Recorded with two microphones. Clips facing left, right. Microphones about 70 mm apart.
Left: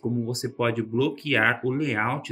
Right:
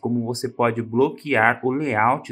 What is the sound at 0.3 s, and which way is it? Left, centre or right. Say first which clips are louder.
Speech: right 5 dB; right.